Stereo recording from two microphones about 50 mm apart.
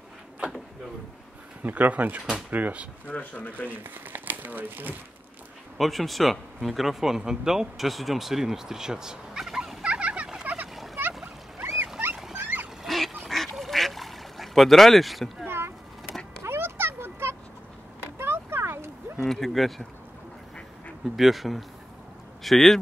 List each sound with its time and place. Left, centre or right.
1.6 s speech: right
3.1 s speech: left
3.6 s speech: right
5.8 s speech: centre
9.8 s fowl: right
10.5 s a sound: right
12.4 s a sound: right
12.8 s duck: centre
15.4 s boat: right
16.4 s a sound: right
19.1 s speech: centre
21.2 s speech: centre